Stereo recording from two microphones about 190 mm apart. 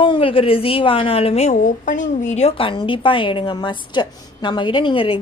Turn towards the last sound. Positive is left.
turn(degrees=25)  # may be behind; listen again after turning